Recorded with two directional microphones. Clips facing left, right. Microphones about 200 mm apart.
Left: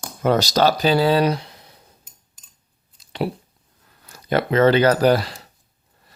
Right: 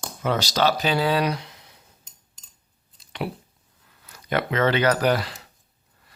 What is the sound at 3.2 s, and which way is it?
Speech, 35° left (ahead or behind).